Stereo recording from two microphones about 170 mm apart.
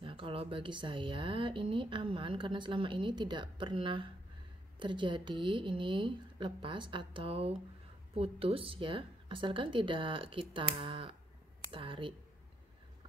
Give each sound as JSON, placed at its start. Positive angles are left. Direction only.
{"t": 0.0, "sound": "speech", "side_deg": -30}